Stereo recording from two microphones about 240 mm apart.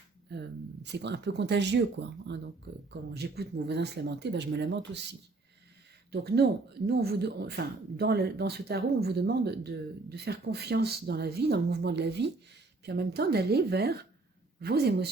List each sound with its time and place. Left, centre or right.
0.3 s speech: right
6.1 s a woman's voice: right